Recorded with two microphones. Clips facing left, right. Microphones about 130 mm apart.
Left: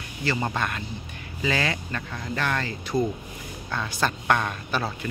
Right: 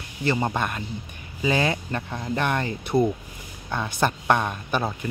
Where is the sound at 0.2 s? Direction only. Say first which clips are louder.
Right 3 dB; 20° right (ahead or behind).